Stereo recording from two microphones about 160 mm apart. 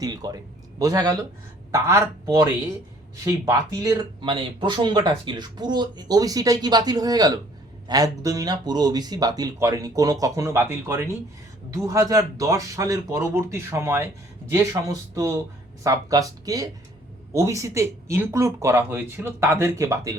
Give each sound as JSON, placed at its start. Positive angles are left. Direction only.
{"t": 0.0, "sound": "speech", "side_deg": -25}